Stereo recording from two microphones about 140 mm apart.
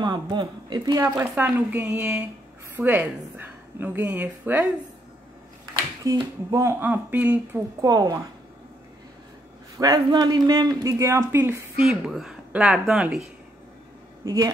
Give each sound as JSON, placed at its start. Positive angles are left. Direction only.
{"t": 0.0, "sound": "speech", "side_deg": -30}
{"t": 1.3, "sound": "a woman's voice", "side_deg": -10}
{"t": 6.1, "sound": "speech", "side_deg": -25}
{"t": 6.8, "sound": "a woman's voice", "side_deg": -10}
{"t": 7.8, "sound": "speech", "side_deg": -25}
{"t": 9.8, "sound": "speech", "side_deg": -30}
{"t": 11.8, "sound": "speech", "side_deg": -5}
{"t": 14.2, "sound": "speech", "side_deg": -25}